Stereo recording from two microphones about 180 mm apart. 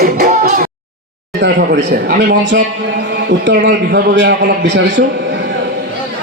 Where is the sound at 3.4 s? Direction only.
75° right (ahead or behind).